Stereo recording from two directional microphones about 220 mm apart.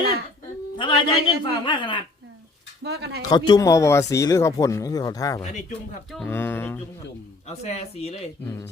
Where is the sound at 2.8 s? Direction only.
50° right (ahead or behind).